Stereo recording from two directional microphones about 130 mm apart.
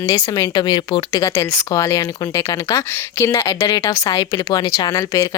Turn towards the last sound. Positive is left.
turn(degrees=25)  # may be behind; listen again after turning